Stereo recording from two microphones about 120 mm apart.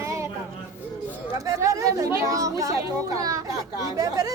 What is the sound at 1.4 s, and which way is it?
Speech, 30° right (ahead or behind).